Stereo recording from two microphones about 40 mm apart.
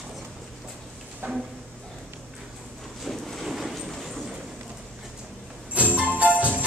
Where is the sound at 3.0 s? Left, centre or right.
Centre.